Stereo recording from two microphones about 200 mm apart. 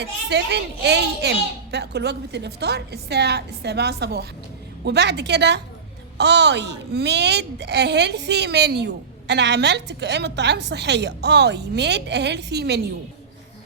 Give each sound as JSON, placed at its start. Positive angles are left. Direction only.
{"t": 0.0, "sound": "a child's voice", "side_deg": -55}